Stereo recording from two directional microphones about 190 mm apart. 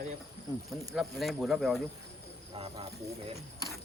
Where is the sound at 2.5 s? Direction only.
30° right (ahead or behind).